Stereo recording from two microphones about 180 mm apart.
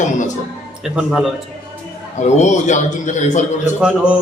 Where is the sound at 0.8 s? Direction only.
5° right (ahead or behind).